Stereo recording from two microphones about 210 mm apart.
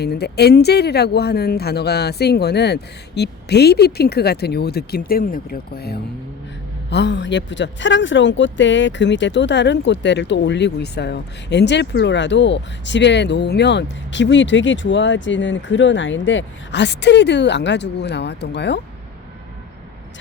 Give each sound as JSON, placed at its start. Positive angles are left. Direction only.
{"t": 0.0, "sound": "speech", "side_deg": 50}